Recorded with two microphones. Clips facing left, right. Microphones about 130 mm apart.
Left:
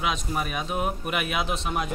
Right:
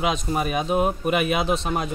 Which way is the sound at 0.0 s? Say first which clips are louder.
Right 5 dB; 25° right (ahead or behind).